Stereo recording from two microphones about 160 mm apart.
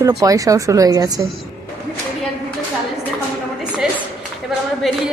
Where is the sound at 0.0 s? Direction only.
20° right (ahead or behind).